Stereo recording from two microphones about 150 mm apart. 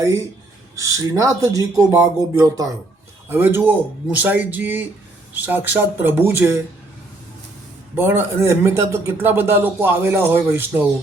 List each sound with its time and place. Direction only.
0.8 s a man's voice: 20° right (ahead or behind)
7.9 s a man's voice: 15° right (ahead or behind)